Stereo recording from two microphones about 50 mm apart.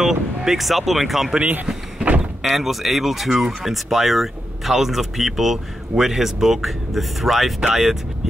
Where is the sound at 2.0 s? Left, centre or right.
Right.